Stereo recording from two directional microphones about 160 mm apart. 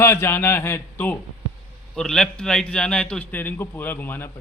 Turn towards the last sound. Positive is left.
turn(degrees=10)  # may be behind; listen again after turning